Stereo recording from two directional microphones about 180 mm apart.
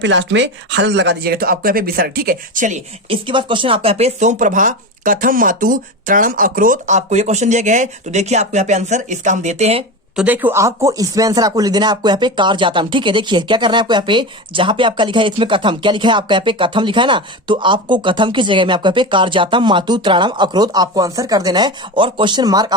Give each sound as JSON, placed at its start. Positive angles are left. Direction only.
{"t": 0.0, "sound": "speech", "side_deg": -85}
{"t": 3.1, "sound": "speech", "side_deg": -30}
{"t": 10.2, "sound": "speech", "side_deg": -10}